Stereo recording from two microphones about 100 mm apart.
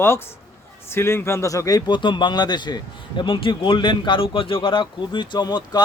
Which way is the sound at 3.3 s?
60° left (ahead or behind).